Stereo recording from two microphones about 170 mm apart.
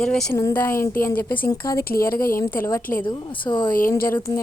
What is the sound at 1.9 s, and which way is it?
Speech, 60° left (ahead or behind).